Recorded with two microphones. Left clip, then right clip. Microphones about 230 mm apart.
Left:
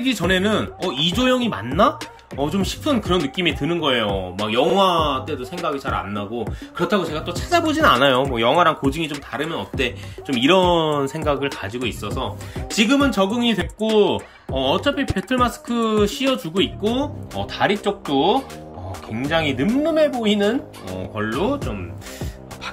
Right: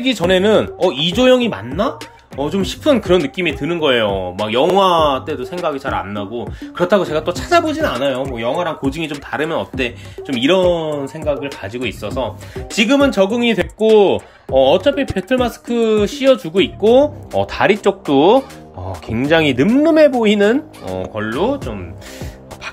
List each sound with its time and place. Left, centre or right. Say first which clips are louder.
0.0 s speech: right 6 dB; centre
7.6 s speech: left 1 dB; centre
7.9 s speech: left 3 dB; centre
20.8 s speech: right 5 dB; centre